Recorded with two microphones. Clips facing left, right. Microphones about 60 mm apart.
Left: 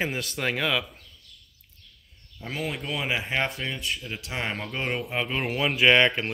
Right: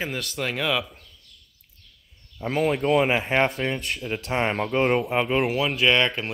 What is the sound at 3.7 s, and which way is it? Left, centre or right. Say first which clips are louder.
Speech: right 4 dB; right.